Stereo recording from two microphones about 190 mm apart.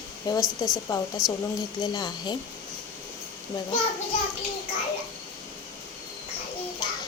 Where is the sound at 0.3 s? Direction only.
20° left (ahead or behind).